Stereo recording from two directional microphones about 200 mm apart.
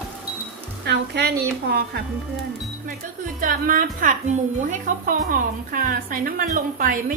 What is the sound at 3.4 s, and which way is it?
A woman's voice, 45° right (ahead or behind).